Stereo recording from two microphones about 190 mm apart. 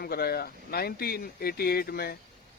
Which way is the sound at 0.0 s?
55° left (ahead or behind).